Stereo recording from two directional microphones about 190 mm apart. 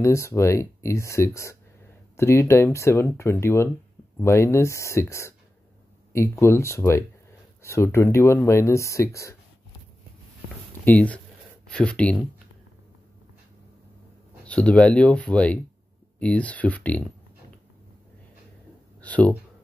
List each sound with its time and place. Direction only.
0.0 s speech: 15° left (ahead or behind)
10.9 s speech: 5° left (ahead or behind)
14.4 s speech: 5° left (ahead or behind)
18.9 s a sound: 10° left (ahead or behind)